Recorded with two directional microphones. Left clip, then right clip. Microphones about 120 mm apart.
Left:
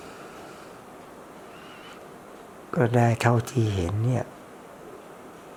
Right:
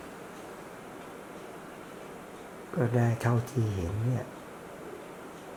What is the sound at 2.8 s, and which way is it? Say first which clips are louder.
Speech: left 8 dB; 40° left (ahead or behind).